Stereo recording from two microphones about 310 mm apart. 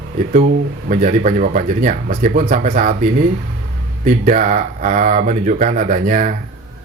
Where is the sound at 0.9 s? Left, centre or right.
Right.